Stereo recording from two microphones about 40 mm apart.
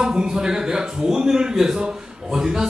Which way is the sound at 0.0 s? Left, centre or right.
Centre.